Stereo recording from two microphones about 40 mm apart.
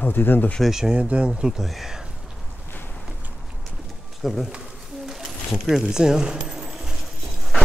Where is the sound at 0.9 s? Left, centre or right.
Right.